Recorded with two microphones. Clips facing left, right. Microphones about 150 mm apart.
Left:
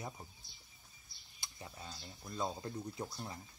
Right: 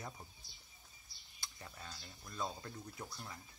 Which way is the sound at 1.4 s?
15° left (ahead or behind).